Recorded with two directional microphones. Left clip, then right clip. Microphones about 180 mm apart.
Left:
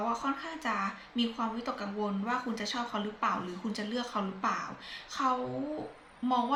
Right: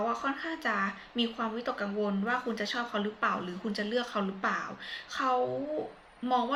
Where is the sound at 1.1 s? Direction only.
15° left (ahead or behind).